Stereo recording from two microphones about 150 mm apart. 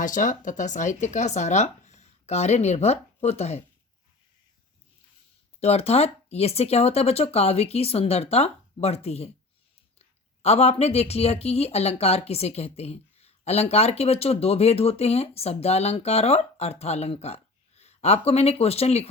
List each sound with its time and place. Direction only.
0.0 s speech: 60° left (ahead or behind)
5.5 s speech: 45° left (ahead or behind)
10.4 s speech: 45° left (ahead or behind)